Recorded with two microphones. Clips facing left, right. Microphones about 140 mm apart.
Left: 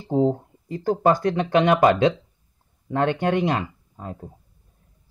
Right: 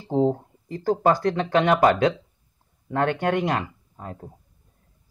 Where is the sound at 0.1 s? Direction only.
15° left (ahead or behind).